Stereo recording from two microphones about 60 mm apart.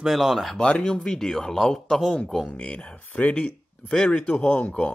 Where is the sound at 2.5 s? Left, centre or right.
Left.